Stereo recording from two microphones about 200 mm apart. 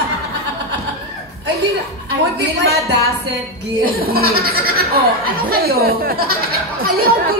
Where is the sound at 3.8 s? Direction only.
50° right (ahead or behind).